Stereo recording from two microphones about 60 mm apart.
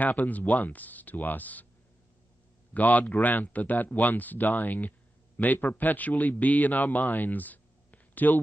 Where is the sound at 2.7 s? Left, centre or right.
Left.